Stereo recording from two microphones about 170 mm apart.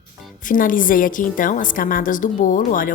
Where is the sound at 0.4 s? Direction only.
55° left (ahead or behind).